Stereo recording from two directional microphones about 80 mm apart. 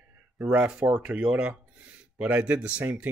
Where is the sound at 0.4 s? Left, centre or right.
Centre.